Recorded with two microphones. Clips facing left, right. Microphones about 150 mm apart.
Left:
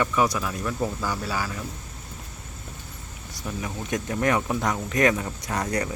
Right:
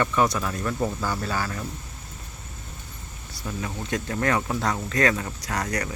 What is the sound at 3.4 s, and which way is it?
Speech, 15° left (ahead or behind).